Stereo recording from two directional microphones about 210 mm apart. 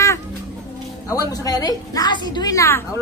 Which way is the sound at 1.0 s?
15° left (ahead or behind).